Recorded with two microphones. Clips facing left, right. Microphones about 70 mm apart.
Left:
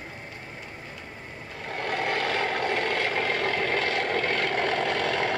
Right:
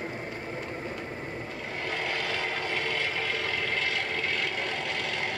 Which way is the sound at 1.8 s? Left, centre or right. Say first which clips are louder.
Left 5 dB; left.